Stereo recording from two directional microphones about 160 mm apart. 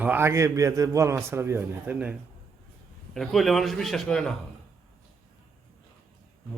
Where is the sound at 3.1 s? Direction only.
Centre (ahead or behind).